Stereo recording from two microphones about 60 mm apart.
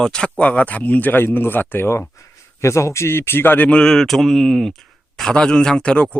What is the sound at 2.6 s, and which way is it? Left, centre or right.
Speech, left.